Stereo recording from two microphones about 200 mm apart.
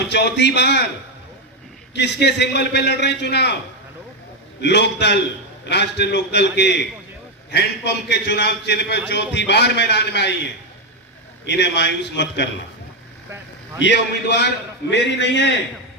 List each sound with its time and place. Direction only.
0.0 s a man's voice: 60° left (ahead or behind)
2.0 s a man's voice: 55° left (ahead or behind)
4.6 s a man's voice: 60° left (ahead or behind)
11.4 s a man's voice: 60° left (ahead or behind)
13.8 s a man's voice: 60° left (ahead or behind)